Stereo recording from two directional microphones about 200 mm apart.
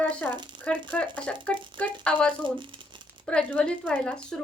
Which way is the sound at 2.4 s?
25° right (ahead or behind).